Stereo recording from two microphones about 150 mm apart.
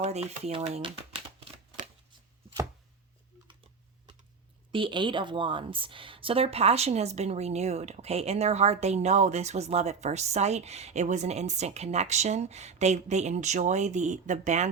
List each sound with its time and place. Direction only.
0.0 s speech: 45° right (ahead or behind)
4.7 s a woman's voice: 35° right (ahead or behind); by 14.7 s 50° right (ahead or behind)